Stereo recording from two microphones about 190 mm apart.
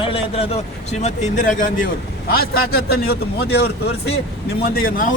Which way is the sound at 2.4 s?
55° left (ahead or behind).